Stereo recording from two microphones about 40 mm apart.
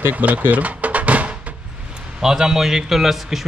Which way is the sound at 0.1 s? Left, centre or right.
Right.